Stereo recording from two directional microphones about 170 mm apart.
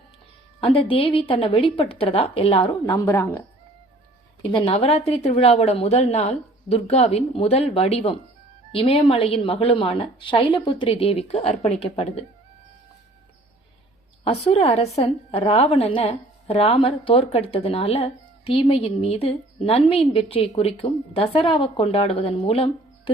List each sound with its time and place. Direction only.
0.6 s a woman's voice: 30° left (ahead or behind)
4.5 s a woman's voice: 35° left (ahead or behind)
14.3 s a woman's voice: 35° left (ahead or behind)